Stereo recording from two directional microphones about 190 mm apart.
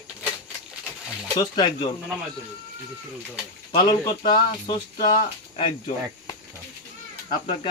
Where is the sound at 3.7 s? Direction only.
20° left (ahead or behind).